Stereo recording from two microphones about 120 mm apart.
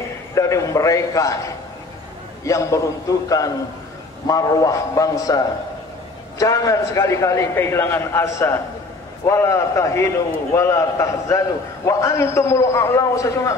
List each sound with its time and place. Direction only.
0.3 s a man's voice: 25° left (ahead or behind)
2.4 s a man's voice: 25° left (ahead or behind)